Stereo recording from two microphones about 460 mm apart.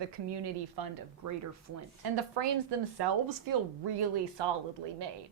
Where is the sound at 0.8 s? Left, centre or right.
Right.